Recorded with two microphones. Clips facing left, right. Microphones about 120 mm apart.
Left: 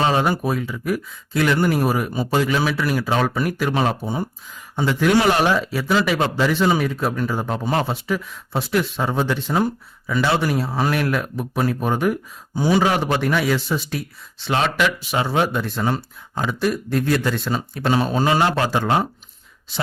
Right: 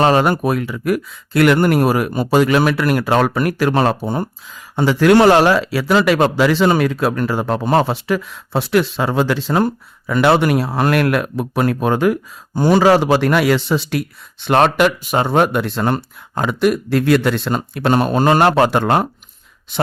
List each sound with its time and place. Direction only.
0.0 s speech: 75° right (ahead or behind)
4.8 s a man's voice: 80° right
5.9 s speech: 70° right (ahead or behind); by 12.1 s 85° right
12.5 s speech: 70° right (ahead or behind)
14.4 s speech: 55° right (ahead or behind)